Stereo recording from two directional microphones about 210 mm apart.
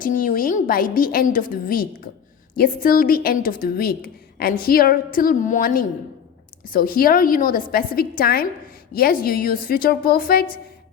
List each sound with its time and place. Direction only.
0.0 s a woman's voice: 40° left (ahead or behind)